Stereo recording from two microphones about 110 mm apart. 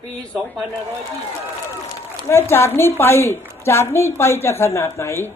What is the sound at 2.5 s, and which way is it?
A woman's voice, 25° left (ahead or behind).